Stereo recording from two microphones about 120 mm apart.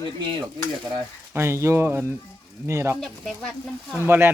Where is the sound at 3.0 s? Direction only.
5° left (ahead or behind).